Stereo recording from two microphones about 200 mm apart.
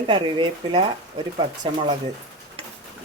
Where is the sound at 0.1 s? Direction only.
25° right (ahead or behind).